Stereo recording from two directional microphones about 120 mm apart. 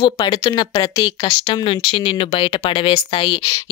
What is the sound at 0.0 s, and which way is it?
Speech, 45° left (ahead or behind).